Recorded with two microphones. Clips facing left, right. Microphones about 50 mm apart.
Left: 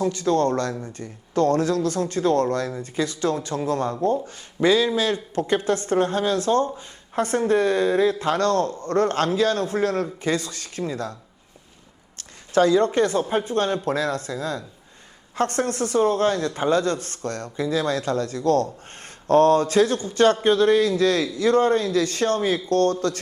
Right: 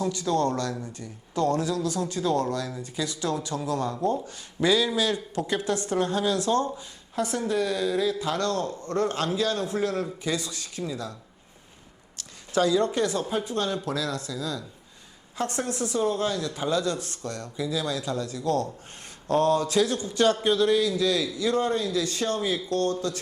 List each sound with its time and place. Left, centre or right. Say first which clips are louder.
0.0 s speech: left 4 dB; left
2.6 s a woman's voice: left 5 dB; left
15.4 s speech: left 6 dB; left